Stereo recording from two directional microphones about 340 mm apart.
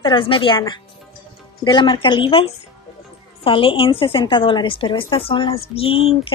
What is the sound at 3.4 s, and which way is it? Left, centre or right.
A woman's voice, centre.